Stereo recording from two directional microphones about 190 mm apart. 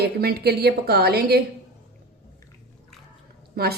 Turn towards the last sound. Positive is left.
turn(degrees=-55)  # may be behind; listen again after turning